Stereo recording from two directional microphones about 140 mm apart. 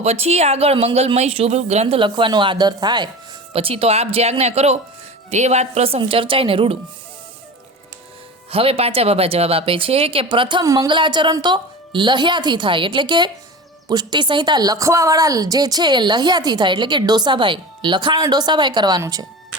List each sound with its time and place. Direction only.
0.0 s speech: 50° right (ahead or behind); by 3.1 s 30° right (ahead or behind)
3.5 s speech: 45° right (ahead or behind)
8.4 s speech: 45° right (ahead or behind)
10.6 s speech: 25° right (ahead or behind)